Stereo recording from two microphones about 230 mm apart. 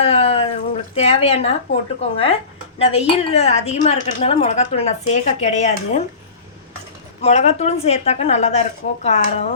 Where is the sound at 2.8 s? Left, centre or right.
Left.